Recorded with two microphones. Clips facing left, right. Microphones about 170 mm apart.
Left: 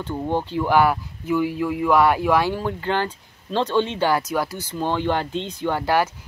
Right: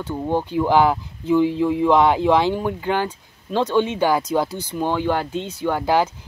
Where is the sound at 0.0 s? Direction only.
10° right (ahead or behind).